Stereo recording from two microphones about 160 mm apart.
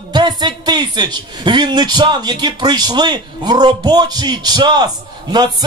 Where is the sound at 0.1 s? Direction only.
25° right (ahead or behind).